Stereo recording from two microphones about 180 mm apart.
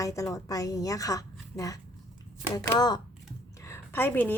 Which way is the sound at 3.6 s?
15° left (ahead or behind).